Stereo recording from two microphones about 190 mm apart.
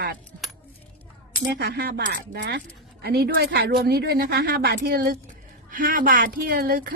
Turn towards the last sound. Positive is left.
turn(degrees=-55)  # may be behind; listen again after turning